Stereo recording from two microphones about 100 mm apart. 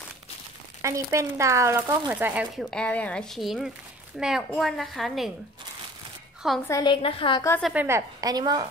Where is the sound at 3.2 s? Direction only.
Centre (ahead or behind).